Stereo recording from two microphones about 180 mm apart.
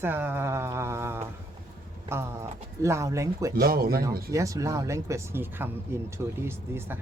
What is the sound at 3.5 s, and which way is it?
Speech, 55° right (ahead or behind).